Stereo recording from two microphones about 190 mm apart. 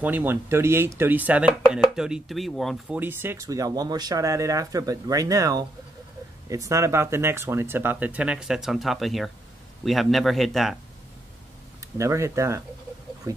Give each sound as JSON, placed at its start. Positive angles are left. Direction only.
{"t": 0.0, "sound": "speech", "side_deg": -10}
{"t": 3.0, "sound": "speech", "side_deg": -10}
{"t": 12.0, "sound": "speech", "side_deg": -15}